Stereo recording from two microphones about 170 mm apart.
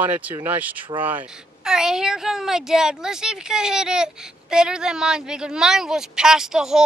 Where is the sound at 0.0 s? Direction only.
10° right (ahead or behind).